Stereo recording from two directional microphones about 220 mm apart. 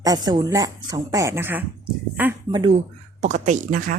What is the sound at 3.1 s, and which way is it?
Speech, 35° right (ahead or behind).